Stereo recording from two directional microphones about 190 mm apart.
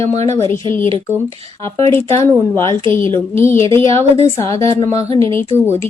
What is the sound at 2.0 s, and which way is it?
Speech, 15° left (ahead or behind).